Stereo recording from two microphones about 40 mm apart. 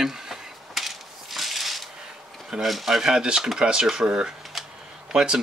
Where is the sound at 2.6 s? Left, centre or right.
Centre; by 4.3 s right.